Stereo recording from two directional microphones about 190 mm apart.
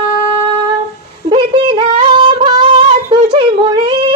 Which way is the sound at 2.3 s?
25° right (ahead or behind).